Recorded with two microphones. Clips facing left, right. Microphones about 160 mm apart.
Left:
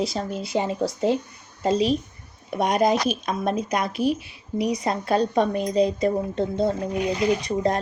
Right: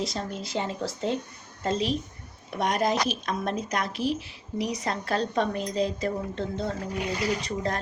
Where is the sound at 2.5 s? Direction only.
15° left (ahead or behind).